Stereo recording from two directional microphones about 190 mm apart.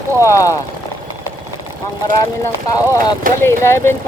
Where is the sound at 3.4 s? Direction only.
15° left (ahead or behind).